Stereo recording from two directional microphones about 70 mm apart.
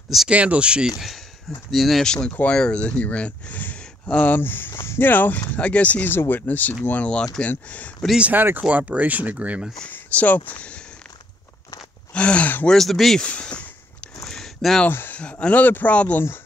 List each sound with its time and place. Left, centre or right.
0.3 s speech: centre
0.9 s speech: centre
2.5 s speech: centre
8.2 s speech: right
9.9 s speech: left
12.1 s speech: centre
12.6 s speech: centre
13.2 s a sound: centre
14.9 s speech: left